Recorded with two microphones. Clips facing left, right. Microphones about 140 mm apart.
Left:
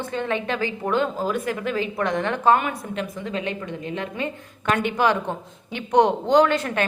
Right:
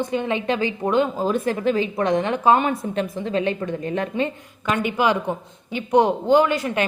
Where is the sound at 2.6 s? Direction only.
35° right (ahead or behind).